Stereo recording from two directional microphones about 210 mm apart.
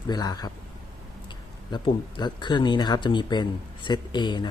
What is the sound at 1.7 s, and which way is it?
Speech, 20° left (ahead or behind).